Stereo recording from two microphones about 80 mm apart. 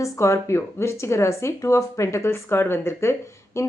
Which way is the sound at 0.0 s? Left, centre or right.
Left.